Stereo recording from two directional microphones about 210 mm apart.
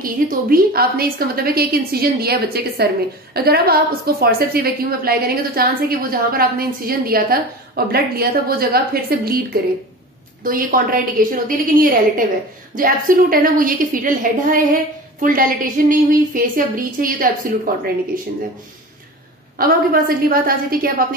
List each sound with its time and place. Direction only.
0.0 s a woman's voice: 45° right (ahead or behind)
10.4 s a woman's voice: 40° right (ahead or behind)
19.6 s a woman's voice: 45° right (ahead or behind)